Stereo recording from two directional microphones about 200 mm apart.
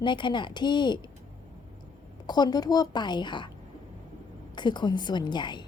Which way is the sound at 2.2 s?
20° left (ahead or behind).